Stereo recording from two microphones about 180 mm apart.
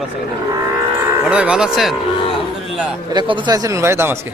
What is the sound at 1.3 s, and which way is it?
Speech, 5° right (ahead or behind).